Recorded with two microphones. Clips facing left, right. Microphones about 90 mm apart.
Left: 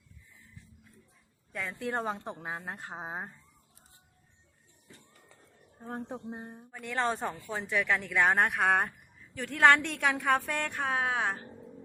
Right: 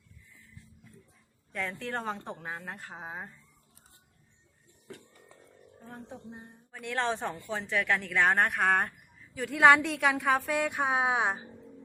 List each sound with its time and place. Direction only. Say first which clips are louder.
1.5 s a woman's voice: left 1 dB; 10° left (ahead or behind); by 3.3 s 30° left (ahead or behind)
4.9 s a sound: right 9 dB; 60° right (ahead or behind)
5.9 s speech: left 6 dB; 45° left (ahead or behind)
6.7 s speech: even; centre (ahead or behind)